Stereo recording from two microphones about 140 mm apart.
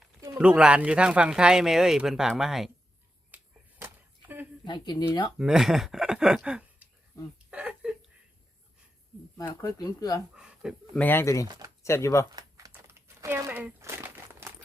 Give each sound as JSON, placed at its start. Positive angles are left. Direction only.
{"t": 0.3, "sound": "speech", "side_deg": -5}
{"t": 3.3, "sound": "a sound", "side_deg": -15}
{"t": 4.6, "sound": "speech", "side_deg": 30}
{"t": 5.4, "sound": "speech", "side_deg": -5}
{"t": 7.5, "sound": "a sound", "side_deg": -10}
{"t": 9.4, "sound": "speech", "side_deg": 25}
{"t": 10.3, "sound": "a sound", "side_deg": -5}
{"t": 10.9, "sound": "speech", "side_deg": 15}
{"t": 11.4, "sound": "speech", "side_deg": -30}
{"t": 11.8, "sound": "speech", "side_deg": 20}
{"t": 12.3, "sound": "typing", "side_deg": -25}
{"t": 12.7, "sound": "crumpling", "side_deg": -15}